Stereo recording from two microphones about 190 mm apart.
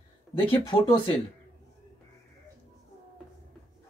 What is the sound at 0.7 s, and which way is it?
Speech, 25° left (ahead or behind).